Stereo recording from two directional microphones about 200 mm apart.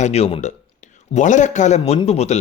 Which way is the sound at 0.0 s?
30° left (ahead or behind).